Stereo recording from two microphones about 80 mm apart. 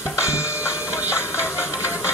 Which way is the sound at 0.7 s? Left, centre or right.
Right.